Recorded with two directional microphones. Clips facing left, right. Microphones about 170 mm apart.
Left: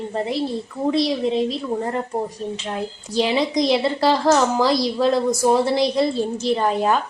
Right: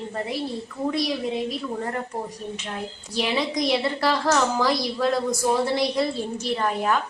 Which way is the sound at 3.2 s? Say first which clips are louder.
Left 5 dB; 25° left (ahead or behind).